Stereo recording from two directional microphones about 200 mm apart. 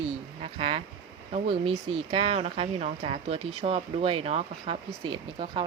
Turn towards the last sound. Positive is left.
turn(degrees=-25)  # may be behind; listen again after turning